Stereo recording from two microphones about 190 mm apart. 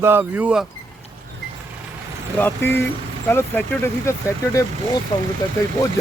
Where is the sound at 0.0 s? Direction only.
10° right (ahead or behind).